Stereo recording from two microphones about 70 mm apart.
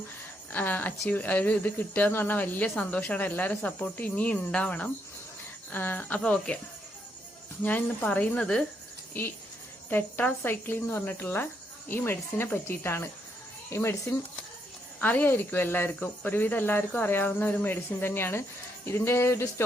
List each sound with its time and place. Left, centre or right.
0.5 s speech: left
5.7 s speech: left
7.6 s a woman's voice: left
9.9 s speech: left
15.0 s speech: left